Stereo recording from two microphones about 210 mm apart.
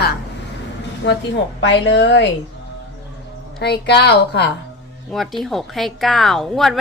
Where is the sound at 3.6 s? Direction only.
50° left (ahead or behind).